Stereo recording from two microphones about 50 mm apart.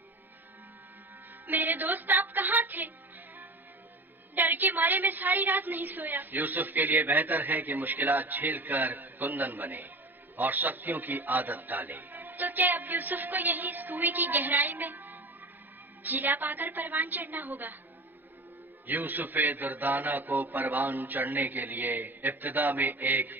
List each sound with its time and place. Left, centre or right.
1.5 s speech: right
4.4 s a woman's voice: right
18.9 s a woman's voice: right